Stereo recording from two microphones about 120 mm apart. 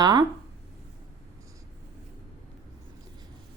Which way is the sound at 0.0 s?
35° right (ahead or behind).